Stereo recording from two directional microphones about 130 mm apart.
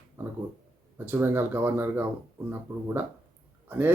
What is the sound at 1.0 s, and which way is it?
Speech, 15° right (ahead or behind).